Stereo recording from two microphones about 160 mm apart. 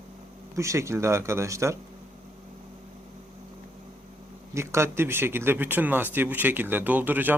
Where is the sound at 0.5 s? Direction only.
20° right (ahead or behind).